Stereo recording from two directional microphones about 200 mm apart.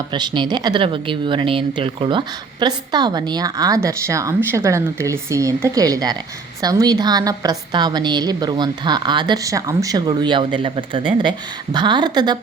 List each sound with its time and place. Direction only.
0.1 s speech: 20° right (ahead or behind)